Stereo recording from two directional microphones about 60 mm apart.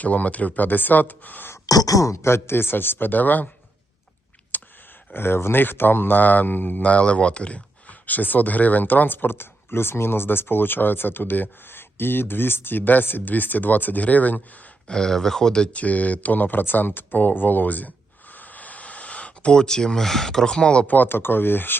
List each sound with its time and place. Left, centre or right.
0.0 s speech: left
1.6 s speech: left
2.2 s speech: left
4.5 s a sound: left
5.1 s speech: left
14.8 s speech: centre; by 17.9 s left
18.3 s a sound: left
20.9 s speech: left